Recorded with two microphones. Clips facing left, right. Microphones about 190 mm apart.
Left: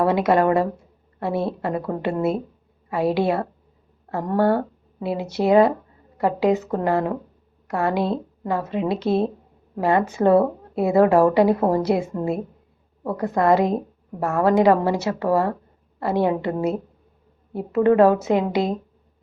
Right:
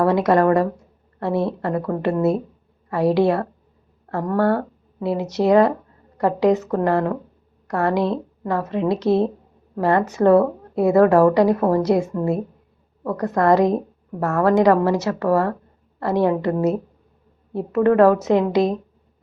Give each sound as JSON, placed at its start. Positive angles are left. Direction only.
{"t": 0.0, "sound": "a woman's voice", "side_deg": 20}